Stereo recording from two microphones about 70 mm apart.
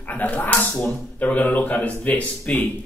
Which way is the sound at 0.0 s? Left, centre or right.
Left.